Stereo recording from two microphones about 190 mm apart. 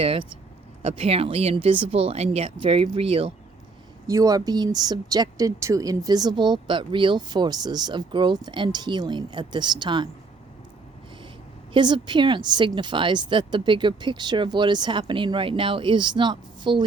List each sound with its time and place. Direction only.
0.0 s speech: 30° right (ahead or behind)
4.0 s speech: 15° right (ahead or behind)
11.7 s speech: 25° right (ahead or behind)